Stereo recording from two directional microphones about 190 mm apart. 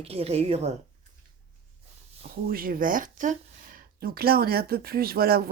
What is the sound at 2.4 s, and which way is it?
Speech, 50° right (ahead or behind).